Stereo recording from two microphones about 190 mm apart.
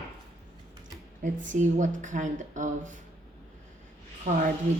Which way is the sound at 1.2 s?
45° right (ahead or behind).